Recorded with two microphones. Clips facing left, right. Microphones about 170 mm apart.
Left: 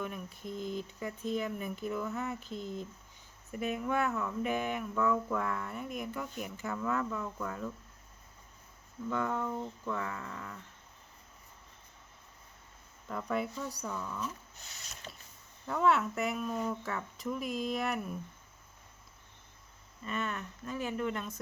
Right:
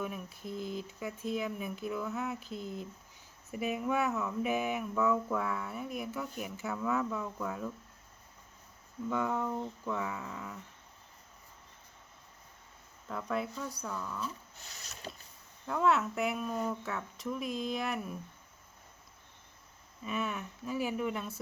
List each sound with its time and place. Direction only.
0.0 s speech: 5° right (ahead or behind)
9.0 s speech: 5° right (ahead or behind)
13.1 s speech: centre (ahead or behind)
15.1 s speech: 20° right (ahead or behind)
15.6 s speech: centre (ahead or behind)
20.1 s speech: 5° right (ahead or behind)